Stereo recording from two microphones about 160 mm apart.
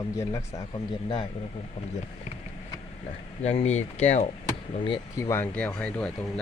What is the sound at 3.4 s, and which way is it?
Speech, 40° left (ahead or behind).